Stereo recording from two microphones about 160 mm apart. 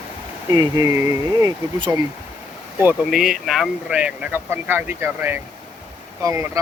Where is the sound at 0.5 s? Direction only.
20° right (ahead or behind).